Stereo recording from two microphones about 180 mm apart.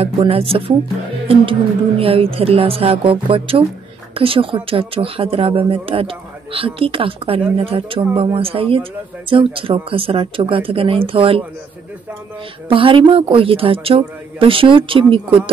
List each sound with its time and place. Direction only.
0.0 s speech: 30° right (ahead or behind)
12.6 s speech: 30° right (ahead or behind)